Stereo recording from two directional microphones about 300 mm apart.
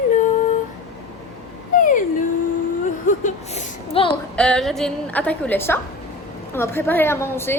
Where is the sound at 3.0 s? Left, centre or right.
Left.